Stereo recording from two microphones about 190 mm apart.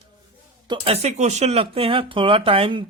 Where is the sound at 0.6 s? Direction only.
30° right (ahead or behind).